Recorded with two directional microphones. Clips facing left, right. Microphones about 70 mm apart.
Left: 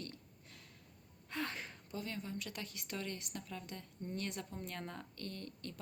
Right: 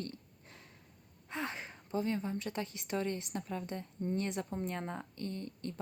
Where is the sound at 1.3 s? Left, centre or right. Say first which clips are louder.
Right 2 dB; right.